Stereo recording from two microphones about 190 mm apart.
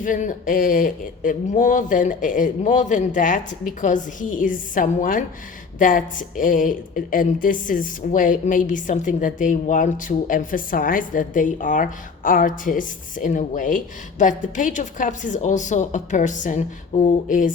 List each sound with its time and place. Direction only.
0.0 s speech: 45° left (ahead or behind)